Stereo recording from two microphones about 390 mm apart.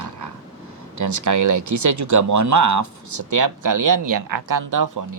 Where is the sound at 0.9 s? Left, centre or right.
Right.